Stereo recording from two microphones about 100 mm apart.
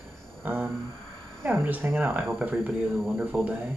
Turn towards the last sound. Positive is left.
turn(degrees=-15)  # may be behind; listen again after turning